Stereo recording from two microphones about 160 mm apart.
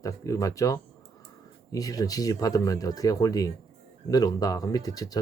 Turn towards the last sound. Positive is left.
turn(degrees=25)  # may be behind; listen again after turning